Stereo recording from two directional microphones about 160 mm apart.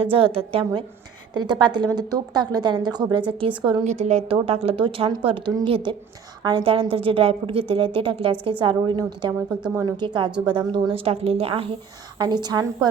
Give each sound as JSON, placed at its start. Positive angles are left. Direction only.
{"t": 0.0, "sound": "a woman's voice", "side_deg": -35}
{"t": 3.8, "sound": "a woman's voice", "side_deg": -45}
{"t": 12.2, "sound": "a woman's voice", "side_deg": -25}